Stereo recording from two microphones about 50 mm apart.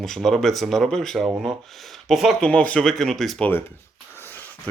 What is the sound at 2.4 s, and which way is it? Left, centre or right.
Speech, centre.